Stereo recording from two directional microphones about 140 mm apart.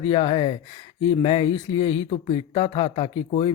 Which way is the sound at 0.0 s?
40° left (ahead or behind).